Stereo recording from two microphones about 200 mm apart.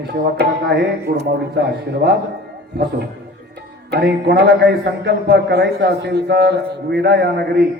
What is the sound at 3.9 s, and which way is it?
A man's voice, 55° right (ahead or behind).